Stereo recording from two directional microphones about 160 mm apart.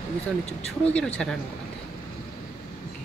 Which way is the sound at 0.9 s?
5° left (ahead or behind).